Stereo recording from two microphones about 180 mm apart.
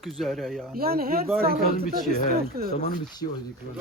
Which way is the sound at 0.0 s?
Centre (ahead or behind).